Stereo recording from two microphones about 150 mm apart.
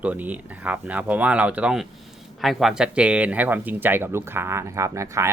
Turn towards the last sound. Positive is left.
turn(degrees=-20)  # may be behind; listen again after turning